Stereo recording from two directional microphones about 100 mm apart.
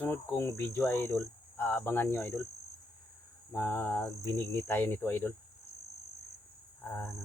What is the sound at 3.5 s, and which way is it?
Speech, 20° left (ahead or behind).